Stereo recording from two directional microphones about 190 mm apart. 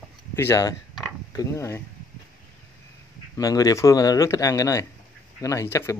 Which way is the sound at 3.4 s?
20° left (ahead or behind).